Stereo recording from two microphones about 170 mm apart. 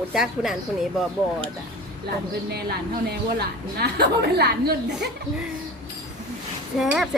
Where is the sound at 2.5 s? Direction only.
70° right (ahead or behind).